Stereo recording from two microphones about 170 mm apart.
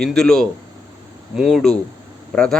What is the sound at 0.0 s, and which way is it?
Speech, 5° left (ahead or behind).